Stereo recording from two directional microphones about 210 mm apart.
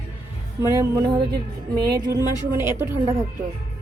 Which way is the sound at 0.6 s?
15° right (ahead or behind).